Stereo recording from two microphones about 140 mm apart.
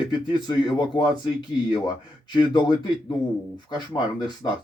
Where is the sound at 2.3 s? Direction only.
30° left (ahead or behind).